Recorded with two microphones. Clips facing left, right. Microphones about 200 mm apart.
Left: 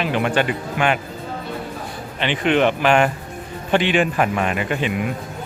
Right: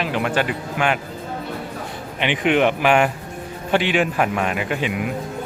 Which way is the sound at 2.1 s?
15° right (ahead or behind).